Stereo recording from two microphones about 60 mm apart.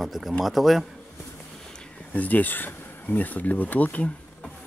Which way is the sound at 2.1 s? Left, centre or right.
Left.